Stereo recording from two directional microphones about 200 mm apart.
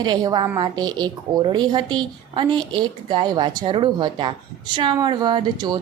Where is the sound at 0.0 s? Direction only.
20° right (ahead or behind).